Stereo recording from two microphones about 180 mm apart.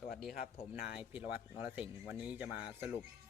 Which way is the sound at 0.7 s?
5° right (ahead or behind).